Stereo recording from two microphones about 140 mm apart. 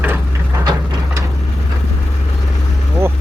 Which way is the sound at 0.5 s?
25° right (ahead or behind).